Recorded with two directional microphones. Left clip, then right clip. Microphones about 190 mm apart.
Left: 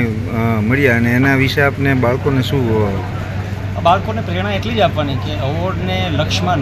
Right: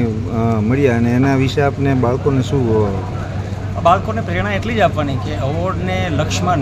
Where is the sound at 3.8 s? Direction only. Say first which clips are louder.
Even; centre (ahead or behind).